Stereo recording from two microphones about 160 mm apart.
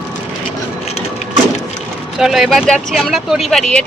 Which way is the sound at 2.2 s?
Centre (ahead or behind).